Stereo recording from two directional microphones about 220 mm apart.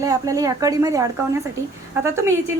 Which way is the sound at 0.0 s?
15° right (ahead or behind).